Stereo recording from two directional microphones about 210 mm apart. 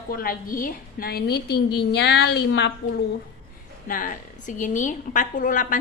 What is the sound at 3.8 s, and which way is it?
A woman's voice, 40° left (ahead or behind).